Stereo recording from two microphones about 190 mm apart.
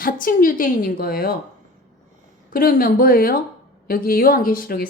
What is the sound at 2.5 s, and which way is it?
A woman's voice, 50° left (ahead or behind).